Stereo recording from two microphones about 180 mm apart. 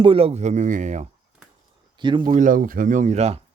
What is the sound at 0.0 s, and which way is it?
Speech, 30° right (ahead or behind).